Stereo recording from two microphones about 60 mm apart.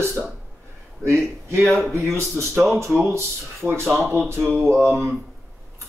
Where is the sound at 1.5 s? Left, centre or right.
Right.